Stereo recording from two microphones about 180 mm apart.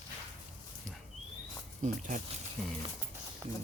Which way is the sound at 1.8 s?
40° right (ahead or behind).